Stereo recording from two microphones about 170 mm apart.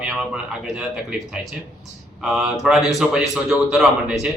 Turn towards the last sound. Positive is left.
turn(degrees=-5)  # may be behind; listen again after turning